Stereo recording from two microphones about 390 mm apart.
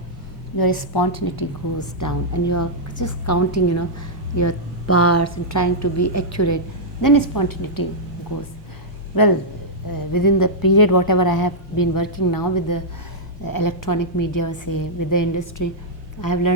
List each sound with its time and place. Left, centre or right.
0.6 s a woman's voice: left
2.0 s a woman's voice: left
7.0 s a woman's voice: left
9.9 s a woman's voice: left